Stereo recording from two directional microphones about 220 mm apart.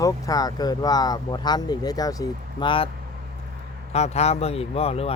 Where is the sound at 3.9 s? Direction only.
30° left (ahead or behind).